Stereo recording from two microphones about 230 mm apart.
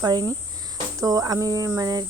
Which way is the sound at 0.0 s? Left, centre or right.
Centre.